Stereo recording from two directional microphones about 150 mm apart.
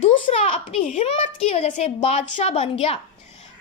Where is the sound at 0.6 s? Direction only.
60° left (ahead or behind).